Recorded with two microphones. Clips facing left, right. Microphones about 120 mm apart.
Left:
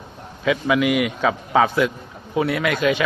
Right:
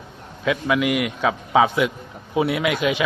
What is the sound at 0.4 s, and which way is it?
A man's voice, centre (ahead or behind).